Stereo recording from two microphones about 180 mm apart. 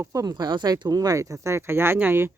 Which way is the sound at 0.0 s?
20° right (ahead or behind).